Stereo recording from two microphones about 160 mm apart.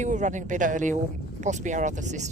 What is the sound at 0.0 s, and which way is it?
Speech, 50° right (ahead or behind).